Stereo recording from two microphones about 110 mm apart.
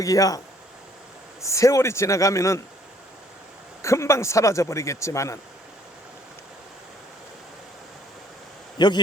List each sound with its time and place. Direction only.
0.0 s speech: 30° left (ahead or behind)
3.8 s speech: 25° left (ahead or behind)
8.8 s speech: 40° left (ahead or behind)